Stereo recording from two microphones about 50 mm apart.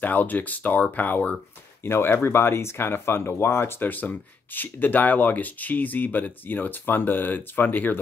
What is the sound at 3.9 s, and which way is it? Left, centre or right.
Speech, left.